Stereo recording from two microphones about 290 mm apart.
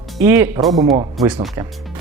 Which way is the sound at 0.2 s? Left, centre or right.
Centre.